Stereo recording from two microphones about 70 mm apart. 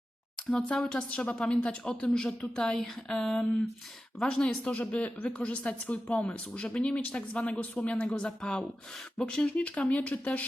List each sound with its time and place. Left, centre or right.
0.5 s a woman's voice: centre